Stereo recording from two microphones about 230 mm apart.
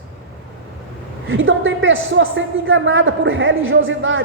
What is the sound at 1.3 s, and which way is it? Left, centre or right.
A woman's voice, right.